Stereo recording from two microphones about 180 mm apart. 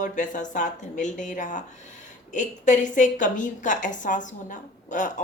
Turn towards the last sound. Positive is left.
turn(degrees=45)  # may be behind; listen again after turning